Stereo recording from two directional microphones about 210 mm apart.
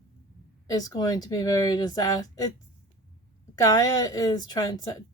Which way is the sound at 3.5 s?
15° left (ahead or behind).